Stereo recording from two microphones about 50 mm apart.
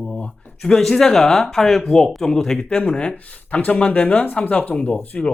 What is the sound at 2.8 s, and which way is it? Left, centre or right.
Speech, left.